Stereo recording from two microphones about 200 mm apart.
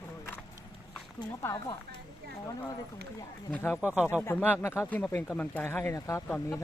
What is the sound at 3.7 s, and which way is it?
Speech, 5° right (ahead or behind).